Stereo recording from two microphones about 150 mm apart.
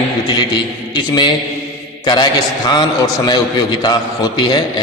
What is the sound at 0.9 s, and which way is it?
A man's voice, 30° left (ahead or behind).